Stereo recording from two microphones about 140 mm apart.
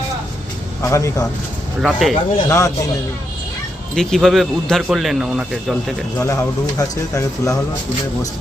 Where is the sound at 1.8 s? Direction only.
Centre (ahead or behind).